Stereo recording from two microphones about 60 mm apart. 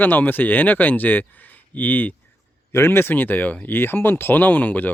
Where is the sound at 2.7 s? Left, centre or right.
Left.